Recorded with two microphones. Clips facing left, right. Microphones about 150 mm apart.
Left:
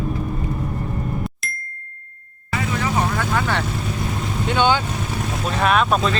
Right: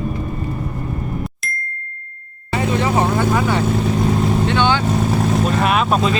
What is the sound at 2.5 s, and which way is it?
Vehicle, 25° right (ahead or behind).